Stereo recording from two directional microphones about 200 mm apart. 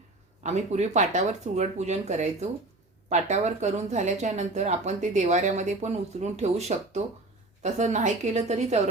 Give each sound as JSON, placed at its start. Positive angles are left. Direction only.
{"t": 0.4, "sound": "speech", "side_deg": -35}